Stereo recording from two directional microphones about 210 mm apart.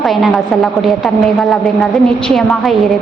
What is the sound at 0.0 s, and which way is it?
A woman's voice, centre (ahead or behind).